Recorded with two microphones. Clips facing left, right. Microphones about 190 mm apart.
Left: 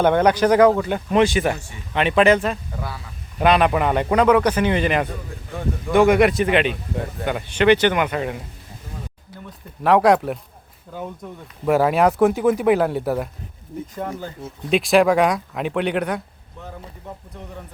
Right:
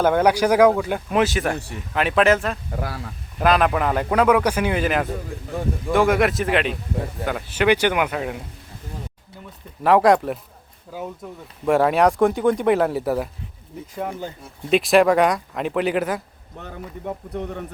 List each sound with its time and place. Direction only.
0.0 s speech: 5° right (ahead or behind)
2.8 s speech: 70° right (ahead or behind)
3.4 s speech: centre (ahead or behind)
9.8 s speech: centre (ahead or behind)